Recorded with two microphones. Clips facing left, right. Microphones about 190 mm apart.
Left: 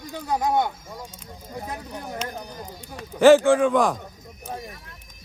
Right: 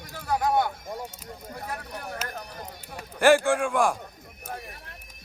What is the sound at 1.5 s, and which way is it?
Speech, 20° left (ahead or behind).